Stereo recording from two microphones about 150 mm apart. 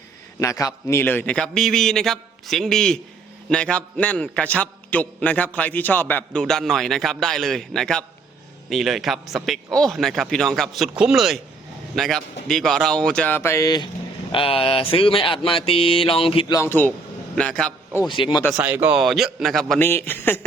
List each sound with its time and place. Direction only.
0.3 s a man's voice: 20° left (ahead or behind)
14.3 s speech: 35° left (ahead or behind)
16.5 s a man's voice: 20° left (ahead or behind)
18.1 s speech: 30° left (ahead or behind)
18.5 s a man's voice: 15° right (ahead or behind); by 19.8 s centre (ahead or behind)
19.8 s a man's voice: 15° left (ahead or behind)